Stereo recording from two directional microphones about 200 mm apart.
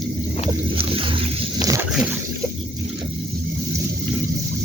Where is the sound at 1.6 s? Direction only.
15° right (ahead or behind).